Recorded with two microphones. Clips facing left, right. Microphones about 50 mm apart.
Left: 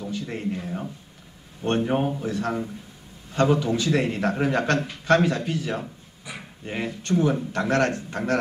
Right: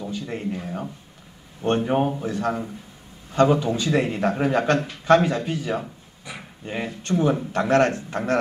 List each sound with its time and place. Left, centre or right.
0.1 s a man's voice: centre
3.5 s a man's voice: right
3.8 s a man's voice: centre
5.5 s a sound: centre
7.0 s a man's voice: right